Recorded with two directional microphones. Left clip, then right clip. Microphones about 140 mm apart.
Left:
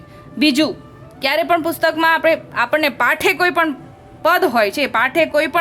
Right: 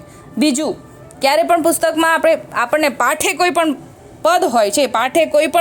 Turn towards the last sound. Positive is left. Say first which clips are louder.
# right 3 dB
turn(degrees=-35)  # may be behind; listen again after turning